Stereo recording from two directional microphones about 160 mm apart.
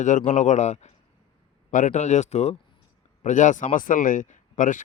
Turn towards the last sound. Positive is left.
turn(degrees=55)  # may be behind; listen again after turning